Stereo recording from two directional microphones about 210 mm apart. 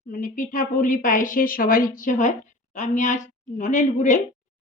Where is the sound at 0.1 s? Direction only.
40° left (ahead or behind).